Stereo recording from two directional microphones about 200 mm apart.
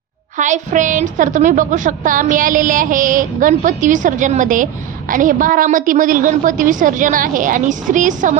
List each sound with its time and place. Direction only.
0.4 s a woman's voice: 40° right (ahead or behind)